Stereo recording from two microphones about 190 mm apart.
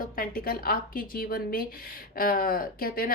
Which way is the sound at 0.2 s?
50° left (ahead or behind).